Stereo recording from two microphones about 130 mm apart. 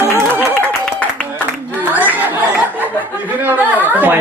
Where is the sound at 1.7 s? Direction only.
15° right (ahead or behind).